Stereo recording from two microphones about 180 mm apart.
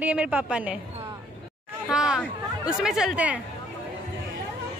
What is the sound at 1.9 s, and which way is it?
Speech, 5° right (ahead or behind).